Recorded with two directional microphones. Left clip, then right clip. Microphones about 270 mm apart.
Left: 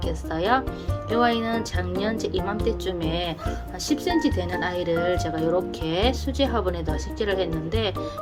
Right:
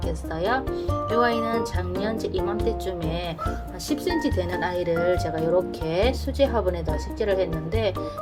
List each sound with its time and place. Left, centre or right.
0.3 s speech: centre